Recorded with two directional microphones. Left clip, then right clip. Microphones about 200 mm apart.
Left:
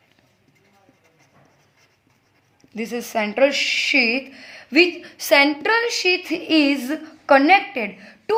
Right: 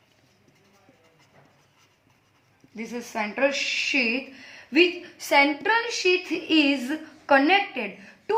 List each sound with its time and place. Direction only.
2.7 s speech: 50° left (ahead or behind)